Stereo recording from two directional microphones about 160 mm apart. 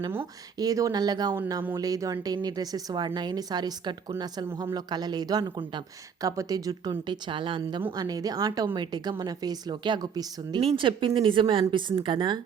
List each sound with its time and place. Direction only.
0.1 s speech: 20° right (ahead or behind)